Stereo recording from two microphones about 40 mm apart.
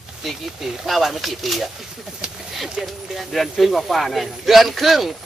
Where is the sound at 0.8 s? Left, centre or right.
Centre.